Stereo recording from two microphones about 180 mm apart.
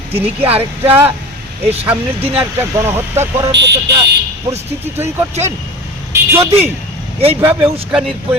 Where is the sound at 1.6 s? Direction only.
35° right (ahead or behind).